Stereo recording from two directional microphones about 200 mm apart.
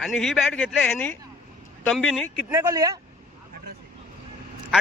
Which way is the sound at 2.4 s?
10° right (ahead or behind).